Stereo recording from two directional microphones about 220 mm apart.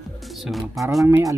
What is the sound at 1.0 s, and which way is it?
Speech, 15° right (ahead or behind).